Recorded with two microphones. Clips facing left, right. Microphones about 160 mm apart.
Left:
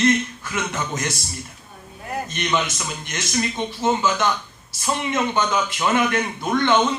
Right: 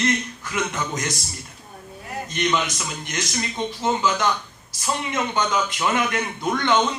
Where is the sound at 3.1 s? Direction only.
20° left (ahead or behind).